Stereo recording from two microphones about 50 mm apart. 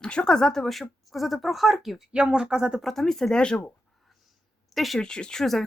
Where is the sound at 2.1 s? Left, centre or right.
Centre.